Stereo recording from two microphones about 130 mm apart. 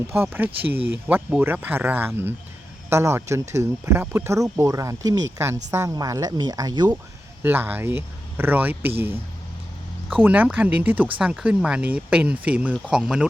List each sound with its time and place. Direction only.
0.1 s speech: 15° right (ahead or behind); by 7.0 s 30° right (ahead or behind)
7.4 s speech: 15° right (ahead or behind)